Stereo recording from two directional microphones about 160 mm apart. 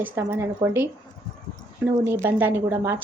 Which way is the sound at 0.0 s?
15° right (ahead or behind).